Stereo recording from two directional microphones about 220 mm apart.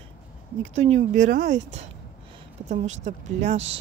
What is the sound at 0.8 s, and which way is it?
A woman's voice, 30° right (ahead or behind).